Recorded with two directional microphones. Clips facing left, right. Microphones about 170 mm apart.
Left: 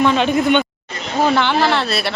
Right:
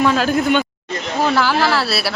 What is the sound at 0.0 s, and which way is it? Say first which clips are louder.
Speech: left 1 dB; centre (ahead or behind).